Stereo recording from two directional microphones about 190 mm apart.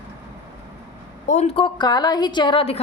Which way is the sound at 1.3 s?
35° left (ahead or behind).